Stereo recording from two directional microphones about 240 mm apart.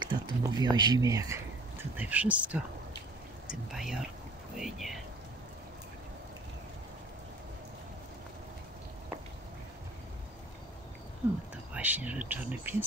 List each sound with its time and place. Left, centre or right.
0.0 s speech: centre
11.7 s speech: centre